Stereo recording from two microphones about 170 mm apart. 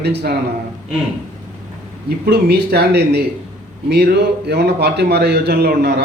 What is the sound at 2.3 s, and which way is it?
A man's voice, 70° right (ahead or behind).